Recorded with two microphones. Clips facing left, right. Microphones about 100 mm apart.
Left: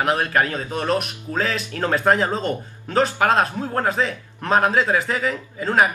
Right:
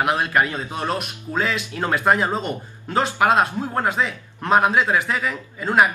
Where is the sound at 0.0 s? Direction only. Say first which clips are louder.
Even; 10° right (ahead or behind).